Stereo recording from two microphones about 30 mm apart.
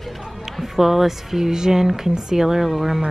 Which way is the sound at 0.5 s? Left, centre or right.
Centre.